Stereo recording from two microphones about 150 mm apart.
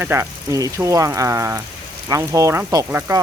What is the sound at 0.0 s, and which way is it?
Speech, 15° right (ahead or behind).